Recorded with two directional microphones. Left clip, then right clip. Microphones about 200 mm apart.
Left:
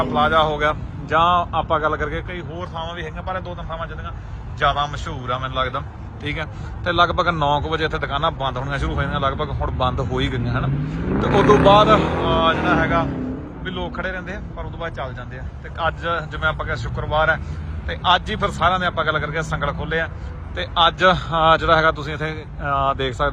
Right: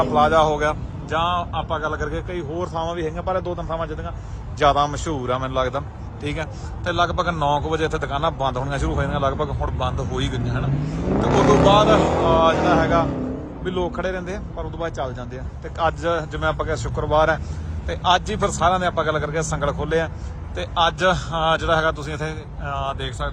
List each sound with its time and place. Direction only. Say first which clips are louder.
0.0 s a man's voice: right 1 dB; 25° right (ahead or behind)
2.3 s a man's voice: right 4 dB; 30° right (ahead or behind); by 11.0 s 15° right (ahead or behind)
11.3 s speech: left 2 dB; 50° right (ahead or behind)
11.6 s a man's voice: left 3 dB; 15° right (ahead or behind)
11.9 s speech: right 2 dB; 55° right (ahead or behind)
12.2 s a man's voice: right 2 dB; 25° right (ahead or behind)